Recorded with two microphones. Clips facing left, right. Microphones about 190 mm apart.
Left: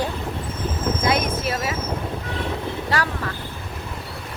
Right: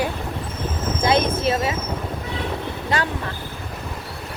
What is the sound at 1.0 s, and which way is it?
Speech, 25° right (ahead or behind).